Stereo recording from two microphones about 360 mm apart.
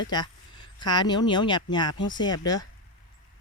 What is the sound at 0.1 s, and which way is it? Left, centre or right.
Speech, centre.